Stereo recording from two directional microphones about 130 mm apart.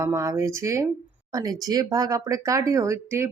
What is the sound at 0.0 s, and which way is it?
Speech, 25° right (ahead or behind).